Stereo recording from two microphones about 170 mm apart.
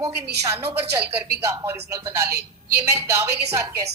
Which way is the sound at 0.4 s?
10° right (ahead or behind).